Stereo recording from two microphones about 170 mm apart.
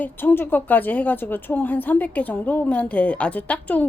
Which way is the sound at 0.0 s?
10° left (ahead or behind).